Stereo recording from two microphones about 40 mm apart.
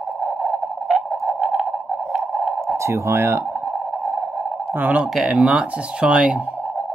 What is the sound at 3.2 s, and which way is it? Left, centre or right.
Speech, right.